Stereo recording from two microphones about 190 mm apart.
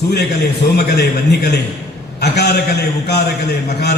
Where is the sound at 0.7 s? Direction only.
60° left (ahead or behind).